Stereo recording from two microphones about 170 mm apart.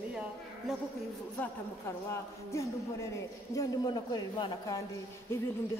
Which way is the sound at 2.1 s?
15° left (ahead or behind).